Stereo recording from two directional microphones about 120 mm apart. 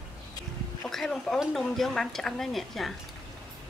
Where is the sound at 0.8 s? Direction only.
5° left (ahead or behind).